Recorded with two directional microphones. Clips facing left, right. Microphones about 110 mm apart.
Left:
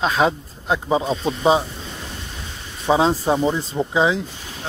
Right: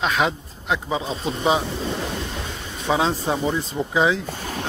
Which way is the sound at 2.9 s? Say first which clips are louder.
Left 4 dB; 30° left (ahead or behind).